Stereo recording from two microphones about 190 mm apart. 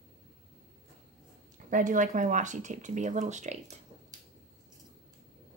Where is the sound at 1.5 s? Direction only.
45° right (ahead or behind).